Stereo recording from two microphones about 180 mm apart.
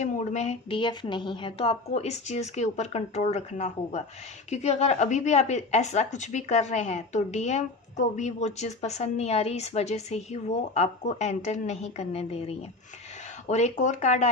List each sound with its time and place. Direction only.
0.0 s speech: 40° left (ahead or behind)